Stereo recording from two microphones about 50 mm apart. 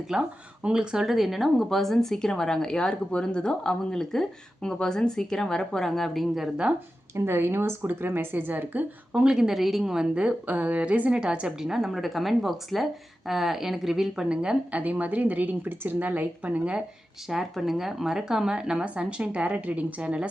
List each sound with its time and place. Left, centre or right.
0.1 s a woman's voice: centre
1.0 s speech: centre
7.3 s a woman's voice: right
9.1 s a woman's voice: centre
10.4 s a woman's voice: right; by 14.3 s centre
14.3 s a woman's voice: centre
14.8 s a woman's voice: right
17.2 s a woman's voice: centre; by 20.2 s right